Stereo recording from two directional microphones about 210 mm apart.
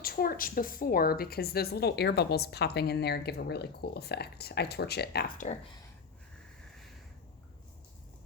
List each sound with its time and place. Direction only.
0.0 s a woman's voice: 45° left (ahead or behind)